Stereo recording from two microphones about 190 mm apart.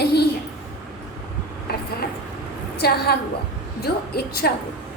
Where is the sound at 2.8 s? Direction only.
55° left (ahead or behind).